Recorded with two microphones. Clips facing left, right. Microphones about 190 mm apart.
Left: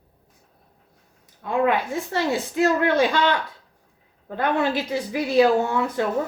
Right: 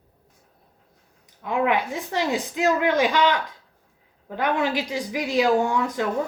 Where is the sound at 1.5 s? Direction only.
15° right (ahead or behind).